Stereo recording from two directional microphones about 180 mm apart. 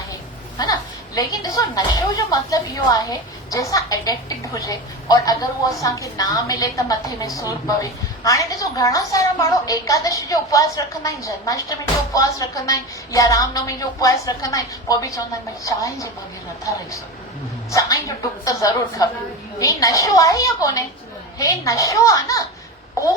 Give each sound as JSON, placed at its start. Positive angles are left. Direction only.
{"t": 0.6, "sound": "a woman's voice", "side_deg": 20}
{"t": 17.7, "sound": "a woman's voice", "side_deg": 20}